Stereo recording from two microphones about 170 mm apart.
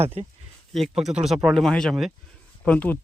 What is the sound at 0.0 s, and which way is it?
Speech, 35° right (ahead or behind).